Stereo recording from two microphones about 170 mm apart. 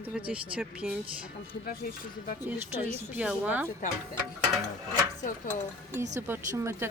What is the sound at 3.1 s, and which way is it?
Speech, 10° right (ahead or behind).